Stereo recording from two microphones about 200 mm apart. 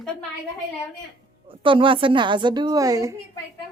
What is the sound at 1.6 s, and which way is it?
Speech, 25° right (ahead or behind).